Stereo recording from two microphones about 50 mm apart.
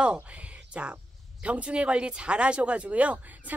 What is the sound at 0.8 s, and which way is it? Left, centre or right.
Speech, right.